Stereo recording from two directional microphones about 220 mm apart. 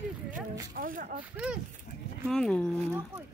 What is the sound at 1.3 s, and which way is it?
Speech, 5° right (ahead or behind).